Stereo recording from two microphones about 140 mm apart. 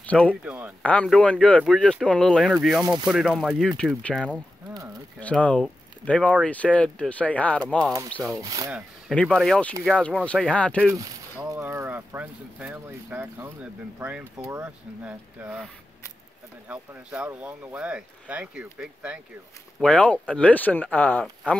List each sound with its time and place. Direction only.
0.0 s speech: 10° left (ahead or behind)
0.4 s speech: 10° right (ahead or behind)
0.8 s speech: 5° left (ahead or behind)
8.4 s speech: 25° right (ahead or behind)
9.1 s speech: 5° left (ahead or behind)
10.8 s speech: 20° right (ahead or behind)
14.3 s speech: 25° right (ahead or behind)
14.6 s speech: 10° right (ahead or behind)
16.6 s speech: 10° right (ahead or behind)
19.8 s speech: 5° left (ahead or behind)